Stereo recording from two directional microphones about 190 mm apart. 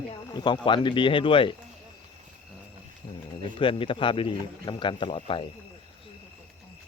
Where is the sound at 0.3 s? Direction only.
25° left (ahead or behind).